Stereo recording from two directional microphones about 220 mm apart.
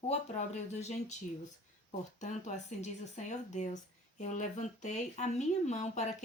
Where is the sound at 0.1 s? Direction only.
30° left (ahead or behind).